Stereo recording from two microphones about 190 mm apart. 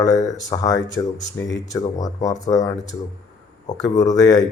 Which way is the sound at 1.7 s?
20° left (ahead or behind).